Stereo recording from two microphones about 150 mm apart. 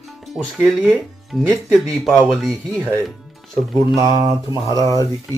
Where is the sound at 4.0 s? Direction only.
25° right (ahead or behind).